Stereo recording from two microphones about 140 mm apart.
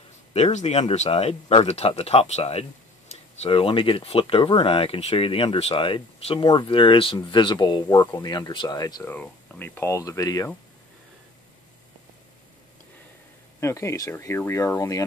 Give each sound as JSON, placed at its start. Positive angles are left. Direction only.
{"t": 0.3, "sound": "speech", "side_deg": 50}
{"t": 9.1, "sound": "speech", "side_deg": 10}
{"t": 13.6, "sound": "speech", "side_deg": 20}